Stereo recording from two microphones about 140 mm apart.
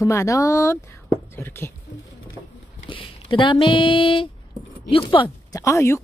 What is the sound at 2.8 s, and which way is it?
Speech, 35° left (ahead or behind).